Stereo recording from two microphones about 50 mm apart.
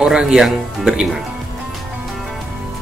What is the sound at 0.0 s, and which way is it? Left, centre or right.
Speech, centre.